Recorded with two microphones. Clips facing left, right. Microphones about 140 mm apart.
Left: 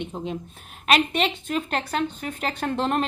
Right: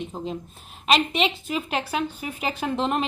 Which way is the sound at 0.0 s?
Centre (ahead or behind).